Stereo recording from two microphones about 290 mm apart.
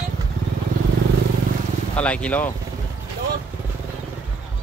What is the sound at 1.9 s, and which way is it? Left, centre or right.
Speech, centre.